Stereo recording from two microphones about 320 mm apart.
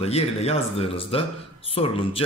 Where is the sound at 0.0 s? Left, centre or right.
Centre.